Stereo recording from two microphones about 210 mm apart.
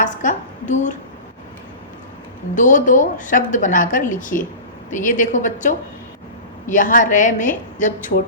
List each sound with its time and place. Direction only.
0.0 s a woman's voice: 35° left (ahead or behind)
2.6 s a woman's voice: 35° left (ahead or behind)